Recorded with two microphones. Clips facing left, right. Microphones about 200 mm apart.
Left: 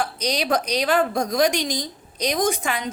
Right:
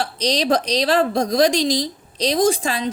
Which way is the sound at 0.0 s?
30° right (ahead or behind).